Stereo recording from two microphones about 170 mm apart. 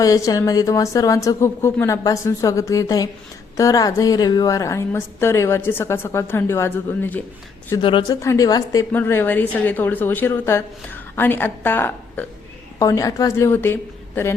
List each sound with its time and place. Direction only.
0.0 s a woman's voice: 20° left (ahead or behind)
7.8 s a woman's voice: 30° left (ahead or behind); by 13.7 s 15° left (ahead or behind)